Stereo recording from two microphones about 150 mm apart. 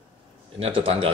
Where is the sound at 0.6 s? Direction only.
40° right (ahead or behind).